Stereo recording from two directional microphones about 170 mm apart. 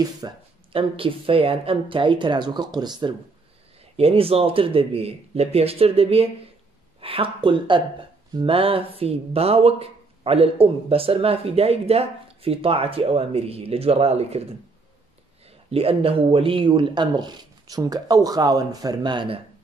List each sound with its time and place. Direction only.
0.2 s speech: 25° right (ahead or behind)
15.7 s speech: 35° right (ahead or behind)